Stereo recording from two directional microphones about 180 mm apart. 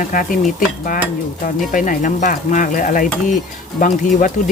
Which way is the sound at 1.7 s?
45° left (ahead or behind).